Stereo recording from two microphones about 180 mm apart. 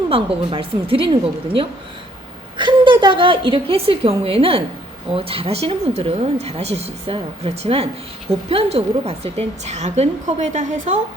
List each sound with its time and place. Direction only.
0.1 s a woman's voice: 30° right (ahead or behind)
2.6 s a woman's voice: 25° right (ahead or behind); by 10.9 s 45° right (ahead or behind)